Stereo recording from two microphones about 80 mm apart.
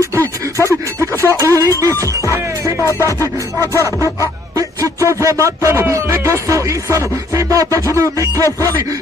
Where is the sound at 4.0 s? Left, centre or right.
Right.